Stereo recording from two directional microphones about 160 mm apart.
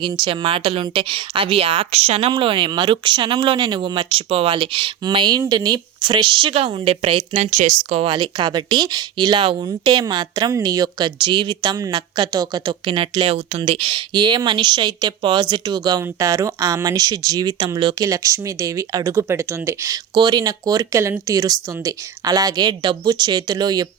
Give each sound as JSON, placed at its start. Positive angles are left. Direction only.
{"t": 0.0, "sound": "speech", "side_deg": -30}